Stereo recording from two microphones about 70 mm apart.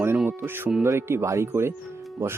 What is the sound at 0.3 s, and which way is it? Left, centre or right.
Speech, right.